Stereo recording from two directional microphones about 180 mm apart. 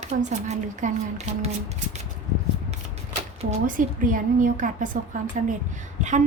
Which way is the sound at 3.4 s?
35° right (ahead or behind).